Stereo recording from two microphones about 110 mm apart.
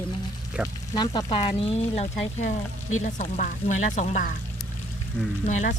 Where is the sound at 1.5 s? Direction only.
65° left (ahead or behind).